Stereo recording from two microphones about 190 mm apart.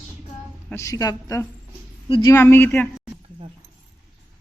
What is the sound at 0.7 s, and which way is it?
A woman's voice, 15° left (ahead or behind).